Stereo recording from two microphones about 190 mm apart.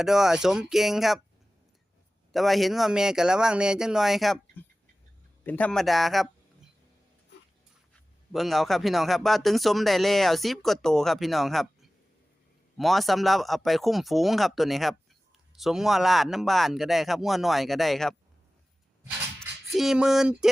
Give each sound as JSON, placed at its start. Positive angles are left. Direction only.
{"t": 0.0, "sound": "speech", "side_deg": 0}
{"t": 2.3, "sound": "speech", "side_deg": 0}
{"t": 8.3, "sound": "speech", "side_deg": 0}
{"t": 19.4, "sound": "speech", "side_deg": 0}